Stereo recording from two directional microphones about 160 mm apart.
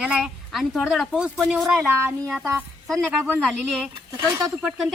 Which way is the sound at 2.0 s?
15° right (ahead or behind).